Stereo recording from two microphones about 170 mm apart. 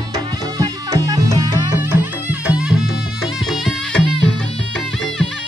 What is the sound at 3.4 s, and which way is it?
Music, 5° left (ahead or behind).